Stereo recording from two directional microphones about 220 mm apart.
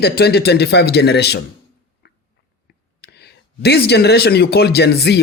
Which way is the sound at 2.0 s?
50° left (ahead or behind).